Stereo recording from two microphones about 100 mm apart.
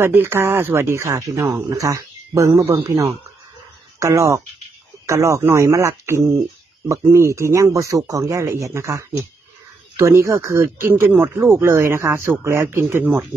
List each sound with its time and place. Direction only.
0.0 s a man's voice: 20° right (ahead or behind)